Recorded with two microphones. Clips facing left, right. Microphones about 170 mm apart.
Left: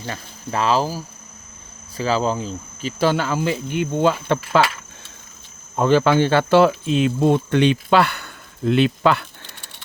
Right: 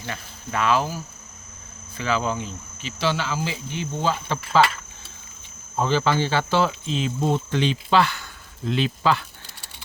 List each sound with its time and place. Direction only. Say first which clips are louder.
0.0 s speech: left 3 dB; 35° left (ahead or behind); by 4.6 s 60° left (ahead or behind)
5.7 s speech: left 6 dB; 60° left (ahead or behind)